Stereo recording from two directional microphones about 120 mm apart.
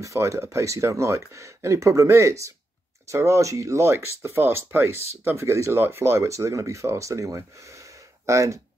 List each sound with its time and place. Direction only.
0.0 s speech: 25° right (ahead or behind)